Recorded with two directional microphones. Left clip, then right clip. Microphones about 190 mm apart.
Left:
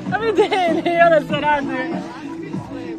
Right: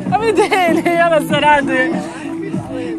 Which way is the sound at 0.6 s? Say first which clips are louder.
Right 2 dB; 10° left (ahead or behind).